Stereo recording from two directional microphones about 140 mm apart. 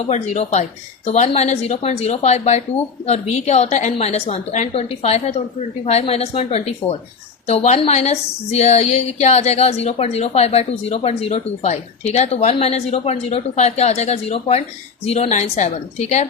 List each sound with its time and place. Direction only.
0.0 s a woman's voice: 50° left (ahead or behind)